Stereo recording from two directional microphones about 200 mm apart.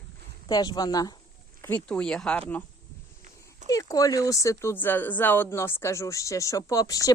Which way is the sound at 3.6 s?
15° left (ahead or behind).